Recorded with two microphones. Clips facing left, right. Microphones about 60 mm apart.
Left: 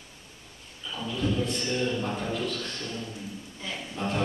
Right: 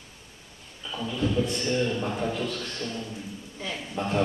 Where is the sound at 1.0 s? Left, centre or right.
Centre.